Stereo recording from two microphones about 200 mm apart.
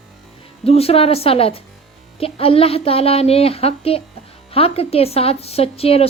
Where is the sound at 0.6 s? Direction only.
30° left (ahead or behind).